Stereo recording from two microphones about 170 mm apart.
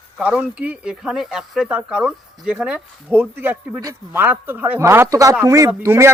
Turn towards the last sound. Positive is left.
turn(degrees=-15)  # may be behind; listen again after turning